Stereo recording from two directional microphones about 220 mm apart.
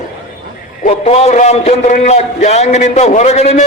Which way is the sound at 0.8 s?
30° left (ahead or behind).